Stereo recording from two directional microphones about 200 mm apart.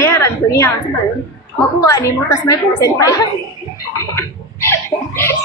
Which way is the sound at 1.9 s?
15° left (ahead or behind).